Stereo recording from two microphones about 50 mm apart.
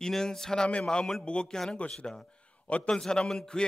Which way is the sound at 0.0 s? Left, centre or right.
Centre.